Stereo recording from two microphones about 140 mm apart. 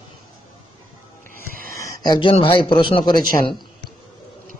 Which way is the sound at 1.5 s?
90° right.